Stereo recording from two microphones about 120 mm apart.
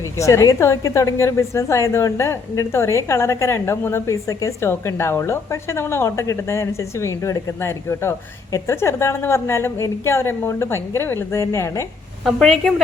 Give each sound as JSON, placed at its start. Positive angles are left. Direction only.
{"t": 0.2, "sound": "a woman's voice", "side_deg": 25}
{"t": 12.2, "sound": "a woman's voice", "side_deg": 5}